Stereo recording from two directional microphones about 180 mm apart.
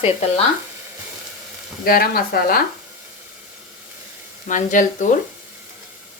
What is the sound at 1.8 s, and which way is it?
Speech, 55° left (ahead or behind).